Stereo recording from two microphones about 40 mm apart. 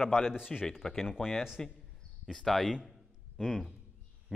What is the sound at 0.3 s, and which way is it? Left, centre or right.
Speech, centre.